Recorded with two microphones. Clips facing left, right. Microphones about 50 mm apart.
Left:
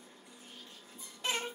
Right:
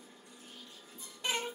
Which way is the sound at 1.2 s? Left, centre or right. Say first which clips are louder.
Even; centre.